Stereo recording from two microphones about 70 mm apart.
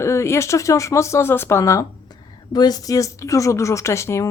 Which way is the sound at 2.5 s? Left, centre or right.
Left.